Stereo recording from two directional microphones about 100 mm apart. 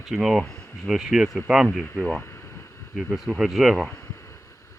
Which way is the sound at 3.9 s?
30° left (ahead or behind).